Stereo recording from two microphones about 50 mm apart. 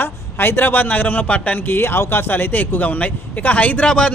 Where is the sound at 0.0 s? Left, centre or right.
Left.